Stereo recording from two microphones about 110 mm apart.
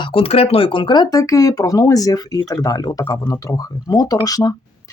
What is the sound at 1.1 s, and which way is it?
Speech, 30° left (ahead or behind).